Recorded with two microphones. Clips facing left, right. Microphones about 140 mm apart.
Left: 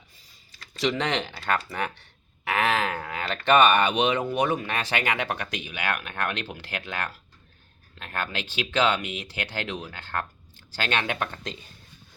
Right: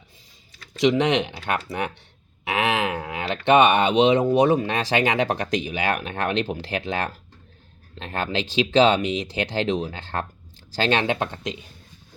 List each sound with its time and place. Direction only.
0.8 s speech: 20° right (ahead or behind)
2.5 s a sound: 20° right (ahead or behind)
4.2 s speech: 30° right (ahead or behind)